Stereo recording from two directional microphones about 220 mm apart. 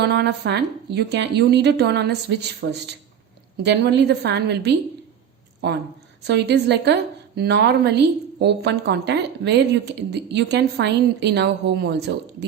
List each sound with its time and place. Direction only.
0.0 s a woman's voice: 50° right (ahead or behind)